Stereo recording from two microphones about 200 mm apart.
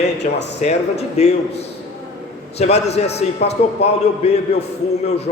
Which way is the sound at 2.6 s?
35° left (ahead or behind).